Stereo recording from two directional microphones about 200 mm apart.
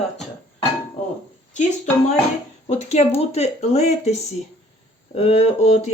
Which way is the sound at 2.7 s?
35° left (ahead or behind).